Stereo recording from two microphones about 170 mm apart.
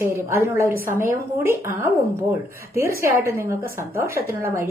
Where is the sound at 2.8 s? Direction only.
15° right (ahead or behind).